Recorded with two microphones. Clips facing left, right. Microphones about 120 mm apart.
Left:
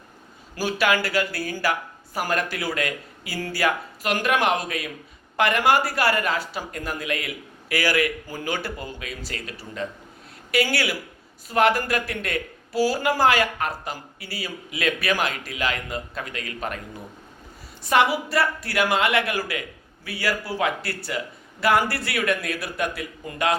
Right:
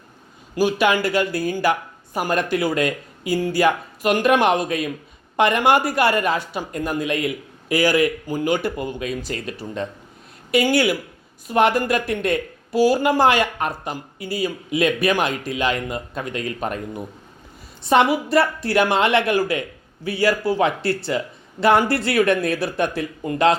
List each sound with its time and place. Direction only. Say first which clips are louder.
0.5 s speech: right 5 dB; 20° right (ahead or behind)